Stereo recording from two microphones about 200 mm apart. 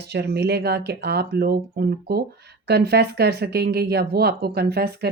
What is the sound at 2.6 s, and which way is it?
Speech, 55° right (ahead or behind).